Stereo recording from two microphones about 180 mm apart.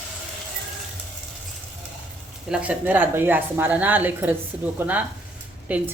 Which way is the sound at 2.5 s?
5° right (ahead or behind).